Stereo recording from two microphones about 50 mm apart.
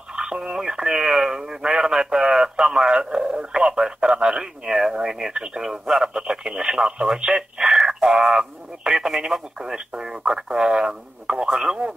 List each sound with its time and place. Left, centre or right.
0.1 s speech: centre